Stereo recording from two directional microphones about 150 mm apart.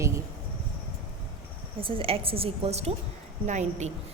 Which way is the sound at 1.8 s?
35° right (ahead or behind).